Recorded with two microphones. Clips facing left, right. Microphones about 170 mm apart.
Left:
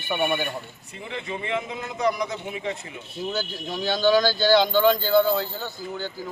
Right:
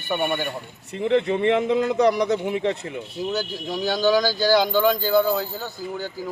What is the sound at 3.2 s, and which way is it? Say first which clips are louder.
Speech: right 2 dB; 10° right (ahead or behind).